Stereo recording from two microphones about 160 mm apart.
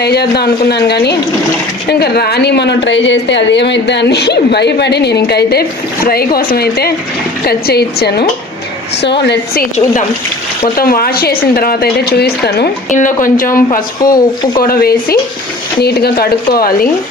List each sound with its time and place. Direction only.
0.0 s speech: 90° left
6.1 s a woman's voice: 70° left (ahead or behind); by 9.6 s 90° left
10.8 s a woman's voice: 70° left (ahead or behind); by 12.7 s 85° left
12.9 s speech: 55° left (ahead or behind)
14.0 s speech: 25° left (ahead or behind)
14.6 s a woman's voice: 70° left (ahead or behind)
15.8 s a woman's voice: 80° left